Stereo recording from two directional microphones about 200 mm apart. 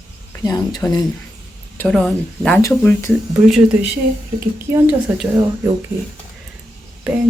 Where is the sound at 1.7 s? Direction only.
5° left (ahead or behind).